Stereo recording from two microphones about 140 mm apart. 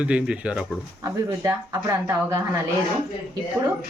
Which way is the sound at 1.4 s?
25° right (ahead or behind).